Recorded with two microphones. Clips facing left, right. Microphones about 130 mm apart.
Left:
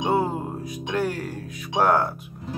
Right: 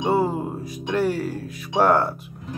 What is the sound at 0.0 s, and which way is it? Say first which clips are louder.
Speech: right 2 dB; centre (ahead or behind).